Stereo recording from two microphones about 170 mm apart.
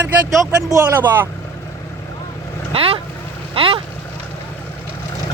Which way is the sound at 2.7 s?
35° right (ahead or behind).